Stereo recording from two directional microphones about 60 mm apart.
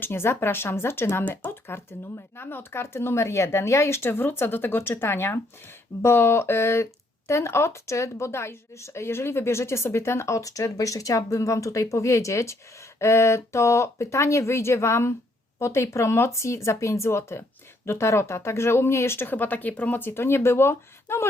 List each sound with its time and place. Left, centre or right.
0.0 s speech: left